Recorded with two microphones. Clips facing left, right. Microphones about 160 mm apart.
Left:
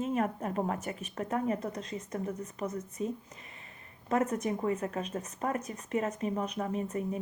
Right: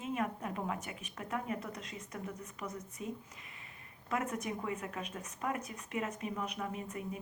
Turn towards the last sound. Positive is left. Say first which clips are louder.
# left 7 dB
turn(degrees=40)  # may be behind; listen again after turning